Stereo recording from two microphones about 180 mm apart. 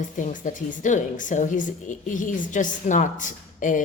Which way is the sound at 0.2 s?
45° left (ahead or behind).